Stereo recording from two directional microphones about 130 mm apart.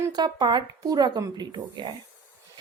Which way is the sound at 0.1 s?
35° right (ahead or behind).